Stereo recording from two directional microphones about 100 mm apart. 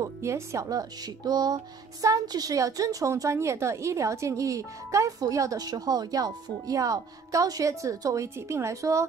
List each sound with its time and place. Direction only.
0.0 s speech: 30° right (ahead or behind)